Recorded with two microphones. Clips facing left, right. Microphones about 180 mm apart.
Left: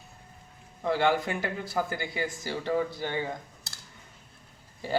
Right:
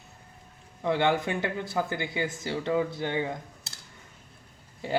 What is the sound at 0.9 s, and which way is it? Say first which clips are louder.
Speech: even; 20° right (ahead or behind).